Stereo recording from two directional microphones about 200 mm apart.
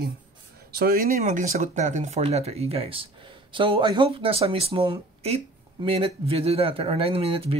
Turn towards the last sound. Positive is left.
turn(degrees=-30)  # may be behind; listen again after turning